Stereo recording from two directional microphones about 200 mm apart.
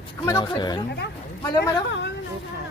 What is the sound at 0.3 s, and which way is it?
A woman's voice, 20° left (ahead or behind).